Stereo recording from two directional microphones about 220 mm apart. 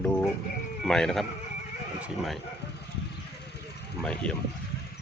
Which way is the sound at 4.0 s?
5° left (ahead or behind).